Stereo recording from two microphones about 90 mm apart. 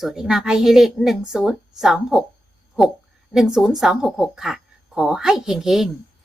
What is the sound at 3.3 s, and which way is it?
A woman's voice, 5° right (ahead or behind).